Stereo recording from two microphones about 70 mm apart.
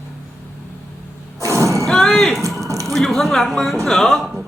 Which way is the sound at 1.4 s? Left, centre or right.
Right.